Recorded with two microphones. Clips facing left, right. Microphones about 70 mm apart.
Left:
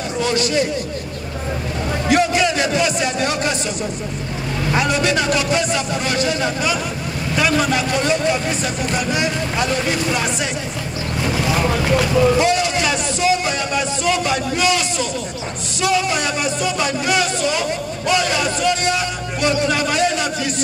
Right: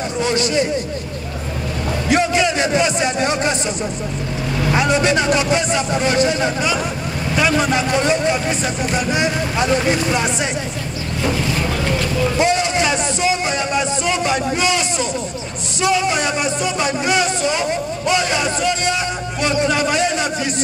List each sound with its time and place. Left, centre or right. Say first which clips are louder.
0.2 s speech: even; right
2.1 s a sound: even; right
4.7 s speech: right 2 dB; right
12.4 s music: even; right
15.8 s speech: right 1 dB; right